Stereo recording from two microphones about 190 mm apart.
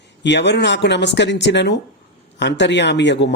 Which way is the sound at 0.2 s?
65° left (ahead or behind).